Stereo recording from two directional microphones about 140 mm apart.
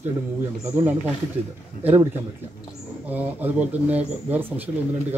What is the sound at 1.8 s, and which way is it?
Speech, 15° right (ahead or behind).